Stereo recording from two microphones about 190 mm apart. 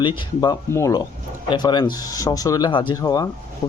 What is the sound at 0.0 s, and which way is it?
Speech, 25° left (ahead or behind).